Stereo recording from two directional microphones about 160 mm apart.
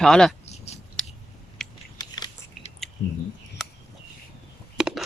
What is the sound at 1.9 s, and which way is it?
Biting, 25° left (ahead or behind).